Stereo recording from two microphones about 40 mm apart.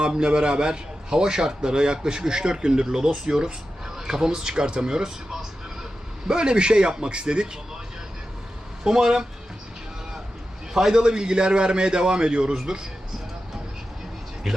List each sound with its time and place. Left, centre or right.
0.0 s a man's voice: right
8.8 s a man's voice: centre
10.8 s a man's voice: centre
11.0 s a man's voice: right